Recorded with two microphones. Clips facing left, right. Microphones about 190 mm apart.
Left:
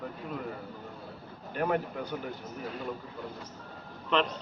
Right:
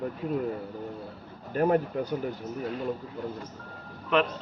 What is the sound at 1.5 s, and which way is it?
Speech, 40° right (ahead or behind).